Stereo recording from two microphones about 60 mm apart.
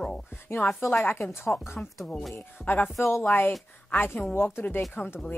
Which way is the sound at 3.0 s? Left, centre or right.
Left.